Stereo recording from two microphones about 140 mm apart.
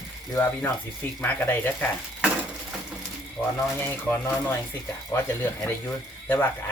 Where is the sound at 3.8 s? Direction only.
15° left (ahead or behind).